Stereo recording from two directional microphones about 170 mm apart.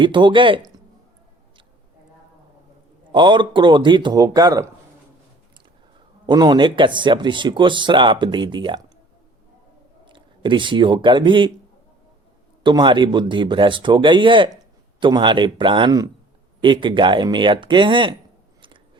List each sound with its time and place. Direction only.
0.0 s speech: 30° right (ahead or behind)
3.1 s speech: 30° right (ahead or behind)
6.2 s speech: 25° right (ahead or behind)
10.1 s speech: 30° right (ahead or behind)
12.6 s speech: 30° right (ahead or behind)